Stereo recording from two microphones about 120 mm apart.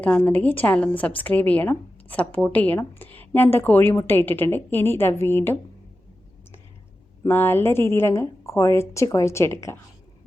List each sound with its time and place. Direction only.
0.0 s a woman's voice: 10° left (ahead or behind)
7.3 s a woman's voice: 20° left (ahead or behind)